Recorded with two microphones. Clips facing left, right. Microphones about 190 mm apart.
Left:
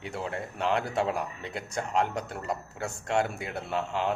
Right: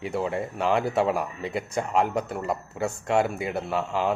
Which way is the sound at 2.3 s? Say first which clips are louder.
Right 5 dB; 55° right (ahead or behind).